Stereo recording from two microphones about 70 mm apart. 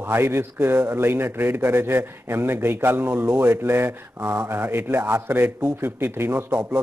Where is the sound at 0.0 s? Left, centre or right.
Right.